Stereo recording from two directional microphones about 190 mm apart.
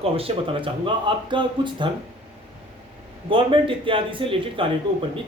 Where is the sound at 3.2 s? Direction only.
25° right (ahead or behind).